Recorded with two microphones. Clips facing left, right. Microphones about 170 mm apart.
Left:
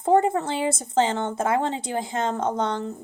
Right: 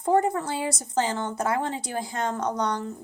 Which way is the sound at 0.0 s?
25° left (ahead or behind).